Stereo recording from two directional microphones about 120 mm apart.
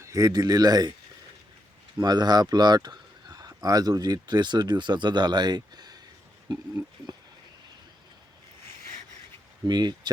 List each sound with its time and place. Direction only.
0.0 s speech: 25° right (ahead or behind)
2.0 s speech: 35° right (ahead or behind)
7.1 s a sound: 35° right (ahead or behind)
9.6 s speech: 35° right (ahead or behind)